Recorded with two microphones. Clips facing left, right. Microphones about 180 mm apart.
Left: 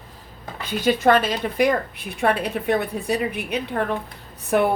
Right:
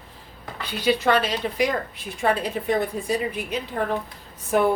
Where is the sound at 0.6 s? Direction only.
45° left (ahead or behind).